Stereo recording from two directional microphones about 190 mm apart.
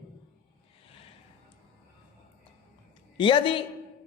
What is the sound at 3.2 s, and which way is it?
Speech, 25° left (ahead or behind).